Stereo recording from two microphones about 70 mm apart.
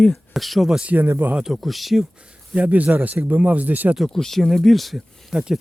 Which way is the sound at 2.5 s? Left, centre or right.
Right.